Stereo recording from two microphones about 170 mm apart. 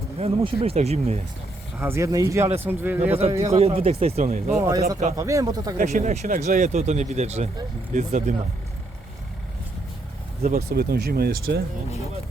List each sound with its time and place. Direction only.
0.2 s speech: 35° right (ahead or behind)
1.8 s speech: 15° right (ahead or behind)
3.1 s speech: 35° right (ahead or behind)
5.1 s speech: 20° right (ahead or behind)
5.7 s speech: 50° right (ahead or behind)
10.5 s speech: 65° right (ahead or behind)